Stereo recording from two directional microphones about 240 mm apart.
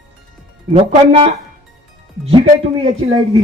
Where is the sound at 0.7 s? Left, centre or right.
Right.